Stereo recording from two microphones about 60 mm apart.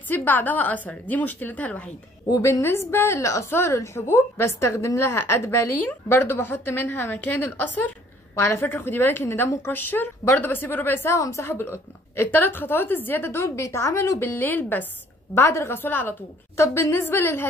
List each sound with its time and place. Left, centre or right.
0.1 s a woman's voice: left
2.4 s a woman's voice: left
3.4 s a woman's voice: left
5.8 s a woman's voice: left
11.1 s a woman's voice: left
11.4 s a woman's voice: left
13.3 s a woman's voice: left
15.3 s a woman's voice: left
15.8 s a woman's voice: left
16.5 s a woman's voice: left
17.0 s a woman's voice: left